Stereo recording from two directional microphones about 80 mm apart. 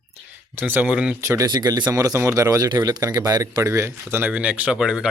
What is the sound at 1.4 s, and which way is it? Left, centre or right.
Speech, right.